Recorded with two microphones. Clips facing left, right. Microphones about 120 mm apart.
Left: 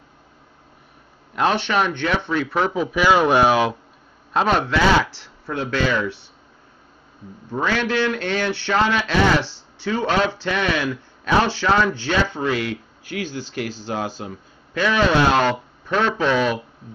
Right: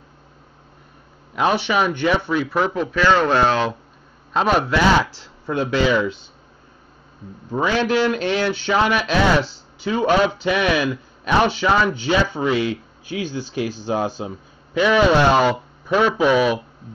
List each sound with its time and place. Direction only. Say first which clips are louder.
1.3 s speech: right 1 dB; 5° right (ahead or behind); by 3.7 s 10° left (ahead or behind)
4.3 s speech: right 1 dB; centre (ahead or behind)
5.5 s speech: right 3 dB; 15° right (ahead or behind)
7.5 s speech: right 3 dB; 15° right (ahead or behind)
9.4 s a sound: right 4 dB; 90° left
9.8 s speech: right 3 dB; 10° right (ahead or behind)
11.6 s speech: right 1 dB; 5° right (ahead or behind)